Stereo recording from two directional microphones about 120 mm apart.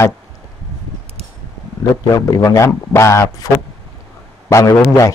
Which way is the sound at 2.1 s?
30° left (ahead or behind).